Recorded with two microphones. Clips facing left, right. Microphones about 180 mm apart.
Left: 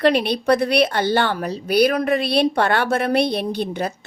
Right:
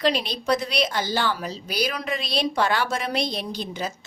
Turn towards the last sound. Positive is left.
turn(degrees=60)  # may be behind; listen again after turning